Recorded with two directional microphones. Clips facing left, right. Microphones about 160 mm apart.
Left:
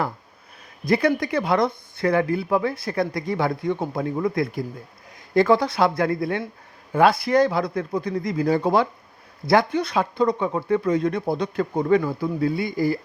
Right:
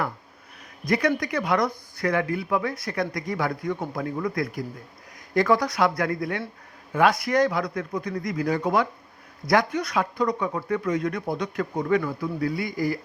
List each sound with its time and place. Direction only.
0.9 s speech: 30° left (ahead or behind)